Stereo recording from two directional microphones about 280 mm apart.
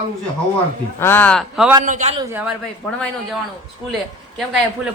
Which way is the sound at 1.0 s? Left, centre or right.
Centre.